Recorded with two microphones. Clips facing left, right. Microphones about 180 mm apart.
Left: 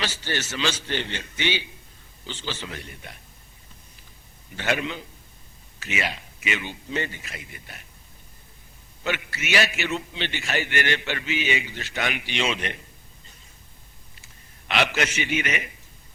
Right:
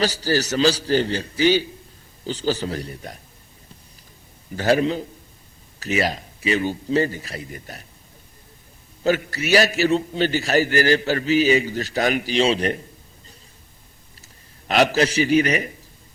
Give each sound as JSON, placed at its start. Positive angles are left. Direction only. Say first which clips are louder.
{"t": 0.0, "sound": "a man's voice", "louder": "right 9 dB", "side_deg": -35}
{"t": 4.5, "sound": "a man's voice", "louder": "right 8 dB", "side_deg": -35}
{"t": 9.0, "sound": "a man's voice", "louder": "right 9 dB", "side_deg": -40}
{"t": 14.7, "sound": "a man's voice", "louder": "right 7 dB", "side_deg": -40}